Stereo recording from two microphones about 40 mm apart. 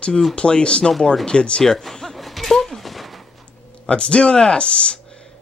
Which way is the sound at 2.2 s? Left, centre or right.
Centre.